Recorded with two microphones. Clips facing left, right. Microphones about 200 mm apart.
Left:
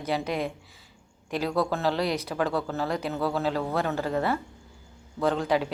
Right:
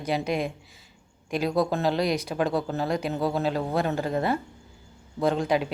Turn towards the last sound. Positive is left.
turn(degrees=-15)  # may be behind; listen again after turning